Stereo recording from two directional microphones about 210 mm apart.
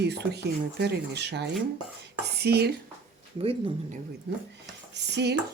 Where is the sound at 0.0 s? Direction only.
55° right (ahead or behind).